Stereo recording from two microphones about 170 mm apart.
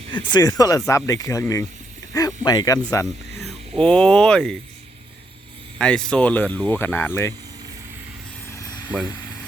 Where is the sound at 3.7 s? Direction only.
5° left (ahead or behind).